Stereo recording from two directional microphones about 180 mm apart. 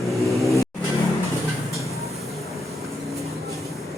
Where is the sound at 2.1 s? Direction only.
Centre (ahead or behind).